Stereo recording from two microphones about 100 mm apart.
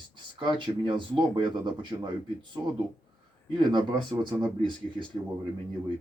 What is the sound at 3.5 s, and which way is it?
Speech, 50° right (ahead or behind).